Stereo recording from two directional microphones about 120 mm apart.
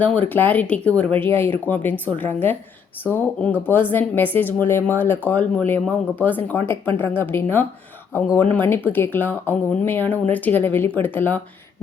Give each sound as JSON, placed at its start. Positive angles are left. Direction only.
{"t": 0.0, "sound": "speech", "side_deg": 10}